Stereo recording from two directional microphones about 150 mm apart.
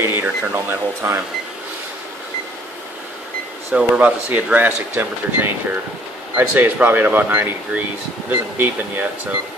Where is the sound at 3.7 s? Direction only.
10° right (ahead or behind).